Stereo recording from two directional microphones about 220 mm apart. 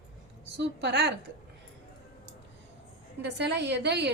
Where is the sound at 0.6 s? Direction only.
50° right (ahead or behind).